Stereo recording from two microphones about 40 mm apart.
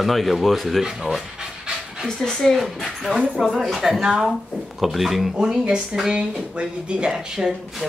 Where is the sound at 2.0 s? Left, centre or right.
Centre.